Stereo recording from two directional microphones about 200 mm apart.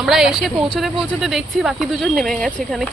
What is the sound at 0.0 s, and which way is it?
Speech, centre (ahead or behind).